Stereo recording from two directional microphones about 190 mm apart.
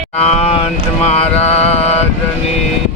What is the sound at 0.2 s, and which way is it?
Speech, 35° left (ahead or behind).